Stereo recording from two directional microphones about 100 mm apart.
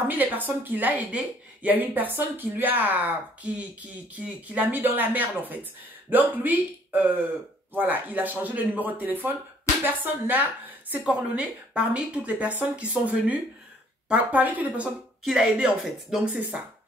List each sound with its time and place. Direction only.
0.1 s speech: 20° right (ahead or behind)
4.1 s speech: 15° right (ahead or behind)